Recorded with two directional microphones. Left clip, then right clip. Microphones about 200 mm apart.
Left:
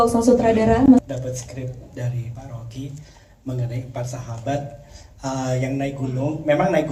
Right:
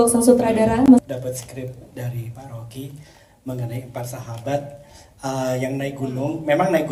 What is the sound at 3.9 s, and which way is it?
A woman's voice, 40° right (ahead or behind).